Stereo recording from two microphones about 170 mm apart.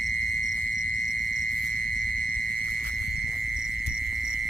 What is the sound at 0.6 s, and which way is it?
Frog, 60° right (ahead or behind).